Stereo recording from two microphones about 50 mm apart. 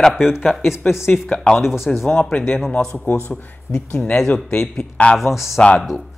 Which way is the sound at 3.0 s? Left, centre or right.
Left.